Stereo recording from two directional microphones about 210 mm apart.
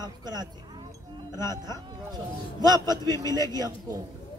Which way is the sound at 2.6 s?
20° right (ahead or behind).